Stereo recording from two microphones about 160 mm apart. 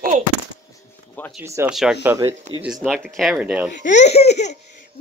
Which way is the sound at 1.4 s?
15° right (ahead or behind).